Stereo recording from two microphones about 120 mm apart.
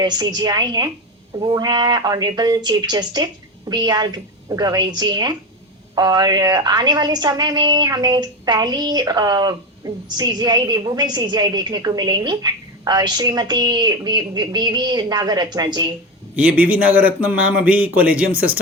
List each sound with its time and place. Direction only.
0.0 s a woman's voice: 35° right (ahead or behind)
16.3 s a man's voice: 10° right (ahead or behind)